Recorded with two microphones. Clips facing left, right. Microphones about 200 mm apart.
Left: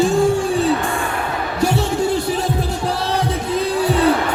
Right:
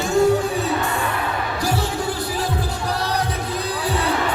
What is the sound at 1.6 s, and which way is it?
Music, 25° left (ahead or behind).